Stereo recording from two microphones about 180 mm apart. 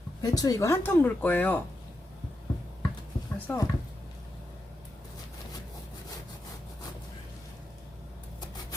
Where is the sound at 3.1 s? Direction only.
20° left (ahead or behind).